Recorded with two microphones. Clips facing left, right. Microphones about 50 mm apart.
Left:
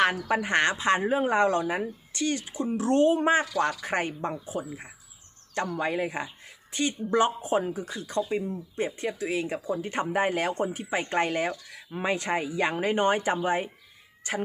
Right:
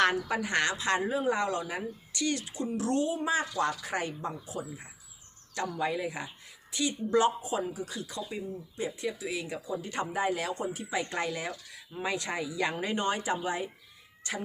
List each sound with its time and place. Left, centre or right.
0.3 s speech: left
5.5 s speech: left
7.2 s speech: left
12.0 s speech: left